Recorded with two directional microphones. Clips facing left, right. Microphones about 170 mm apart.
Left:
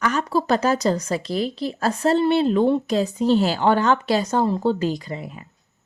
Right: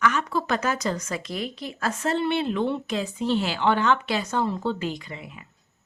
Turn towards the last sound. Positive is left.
turn(degrees=40)  # may be behind; listen again after turning